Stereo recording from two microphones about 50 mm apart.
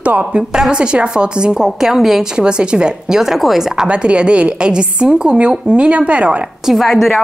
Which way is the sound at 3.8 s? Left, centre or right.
Right.